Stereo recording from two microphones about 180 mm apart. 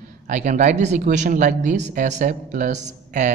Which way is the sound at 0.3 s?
45° right (ahead or behind).